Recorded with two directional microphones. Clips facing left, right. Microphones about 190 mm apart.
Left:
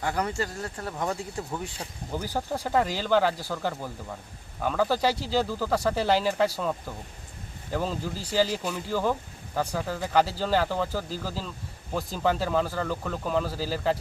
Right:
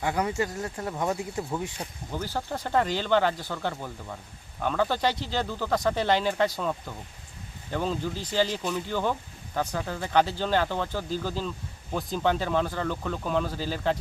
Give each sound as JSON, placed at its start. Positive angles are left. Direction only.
{"t": 0.0, "sound": "speech", "side_deg": -5}
{"t": 0.3, "sound": "speech", "side_deg": -20}
{"t": 2.1, "sound": "speech", "side_deg": 10}